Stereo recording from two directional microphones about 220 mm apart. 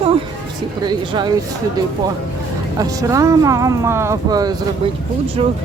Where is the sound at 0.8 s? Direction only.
20° right (ahead or behind).